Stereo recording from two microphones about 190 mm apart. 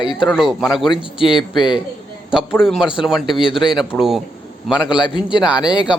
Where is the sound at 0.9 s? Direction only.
25° left (ahead or behind).